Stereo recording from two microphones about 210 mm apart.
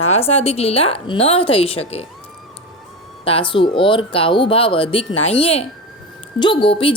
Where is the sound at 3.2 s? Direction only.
25° left (ahead or behind).